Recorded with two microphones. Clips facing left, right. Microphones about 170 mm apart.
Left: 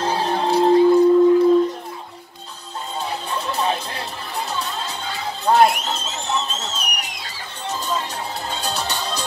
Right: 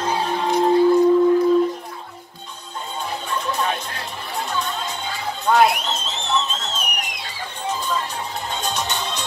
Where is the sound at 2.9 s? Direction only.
35° left (ahead or behind).